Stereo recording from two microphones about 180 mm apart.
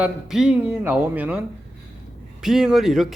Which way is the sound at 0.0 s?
5° right (ahead or behind).